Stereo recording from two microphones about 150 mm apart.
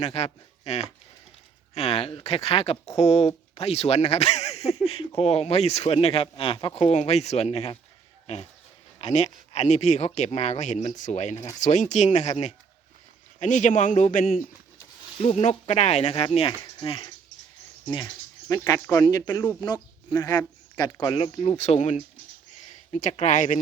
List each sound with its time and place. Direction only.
0.0 s speech: 45° left (ahead or behind)
9.0 s speech: 50° left (ahead or behind); by 14.4 s 65° left (ahead or behind)
15.2 s speech: 45° left (ahead or behind)
21.5 s speech: 50° left (ahead or behind)